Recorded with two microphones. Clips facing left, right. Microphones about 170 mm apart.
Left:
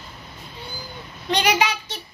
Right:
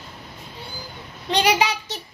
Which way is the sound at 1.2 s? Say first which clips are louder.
Right 1 dB; 30° right (ahead or behind).